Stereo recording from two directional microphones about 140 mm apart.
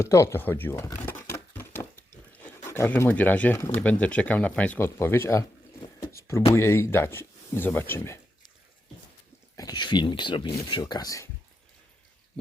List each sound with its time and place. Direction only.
0.0 s speech: 20° left (ahead or behind)
1.0 s a sound: 15° left (ahead or behind)
2.6 s speech: 20° left (ahead or behind)
6.0 s a sound: 20° left (ahead or behind)
6.5 s speech: 20° left (ahead or behind)
9.6 s speech: 30° left (ahead or behind)